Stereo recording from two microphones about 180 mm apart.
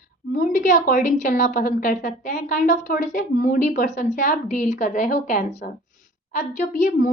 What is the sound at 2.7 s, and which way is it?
A woman's voice, 45° left (ahead or behind).